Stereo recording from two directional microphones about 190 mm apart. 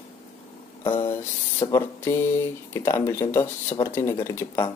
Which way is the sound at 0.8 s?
25° left (ahead or behind).